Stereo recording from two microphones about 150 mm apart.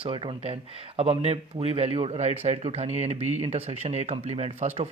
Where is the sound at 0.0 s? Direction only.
35° right (ahead or behind).